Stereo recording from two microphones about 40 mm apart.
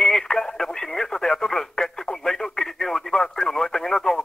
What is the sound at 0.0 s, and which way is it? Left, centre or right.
Radio, centre.